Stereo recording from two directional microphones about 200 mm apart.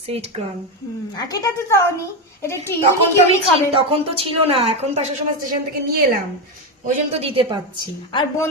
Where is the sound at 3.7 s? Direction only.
25° right (ahead or behind).